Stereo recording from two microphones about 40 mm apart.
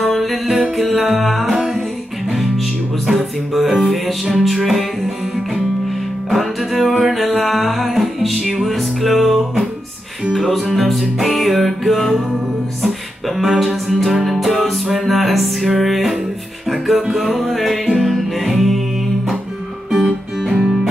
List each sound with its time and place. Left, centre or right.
0.0 s music: centre
3.1 s music: centre
3.7 s music: centre
6.9 s music: centre
7.2 s music: centre
20.0 s guitar: centre